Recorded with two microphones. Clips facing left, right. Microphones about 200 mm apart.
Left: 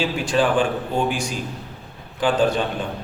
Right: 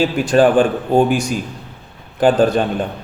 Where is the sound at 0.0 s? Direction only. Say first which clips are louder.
Right 7 dB; 45° right (ahead or behind).